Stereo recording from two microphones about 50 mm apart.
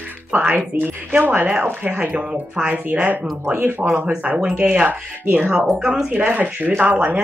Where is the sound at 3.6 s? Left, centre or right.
Right.